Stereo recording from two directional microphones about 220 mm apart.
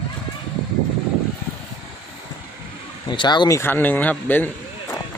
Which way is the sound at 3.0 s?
20° left (ahead or behind).